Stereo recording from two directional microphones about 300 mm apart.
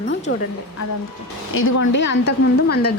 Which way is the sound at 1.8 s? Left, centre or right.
Left.